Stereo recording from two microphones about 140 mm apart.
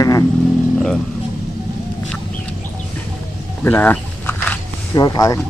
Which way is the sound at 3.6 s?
15° left (ahead or behind).